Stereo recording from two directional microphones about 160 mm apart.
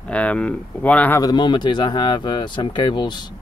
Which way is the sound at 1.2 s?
25° left (ahead or behind).